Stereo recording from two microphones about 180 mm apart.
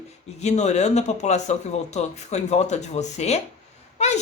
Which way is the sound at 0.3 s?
40° left (ahead or behind).